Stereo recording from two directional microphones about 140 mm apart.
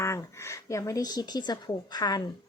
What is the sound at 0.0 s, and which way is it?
Speech, 20° left (ahead or behind).